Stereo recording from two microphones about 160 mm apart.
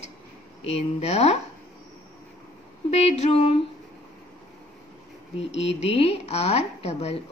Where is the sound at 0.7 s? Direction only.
40° left (ahead or behind).